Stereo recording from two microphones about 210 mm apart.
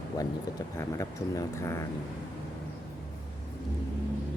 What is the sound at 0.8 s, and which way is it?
Speech, 15° left (ahead or behind).